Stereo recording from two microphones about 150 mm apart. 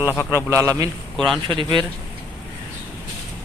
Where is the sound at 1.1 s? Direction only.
Centre (ahead or behind).